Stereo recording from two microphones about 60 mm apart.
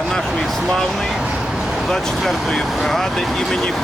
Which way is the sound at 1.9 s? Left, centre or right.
Centre.